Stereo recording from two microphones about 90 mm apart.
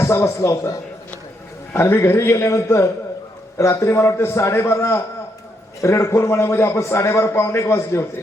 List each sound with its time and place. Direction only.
0.0 s a man's voice: 30° left (ahead or behind)